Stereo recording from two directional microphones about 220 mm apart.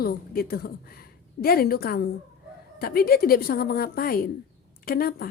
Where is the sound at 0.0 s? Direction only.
45° left (ahead or behind).